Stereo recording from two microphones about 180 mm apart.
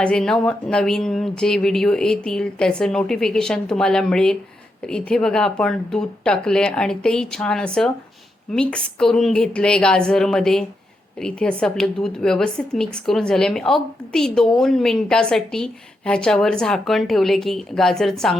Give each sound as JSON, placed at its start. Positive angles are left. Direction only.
{"t": 0.0, "sound": "speech", "side_deg": 5}